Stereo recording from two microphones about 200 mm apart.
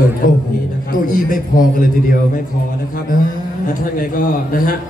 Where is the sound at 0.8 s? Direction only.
45° left (ahead or behind).